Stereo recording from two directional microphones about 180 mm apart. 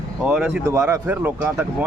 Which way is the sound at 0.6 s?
15° right (ahead or behind).